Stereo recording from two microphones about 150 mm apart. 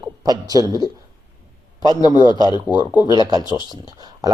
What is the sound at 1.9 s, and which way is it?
A man's voice, 30° left (ahead or behind).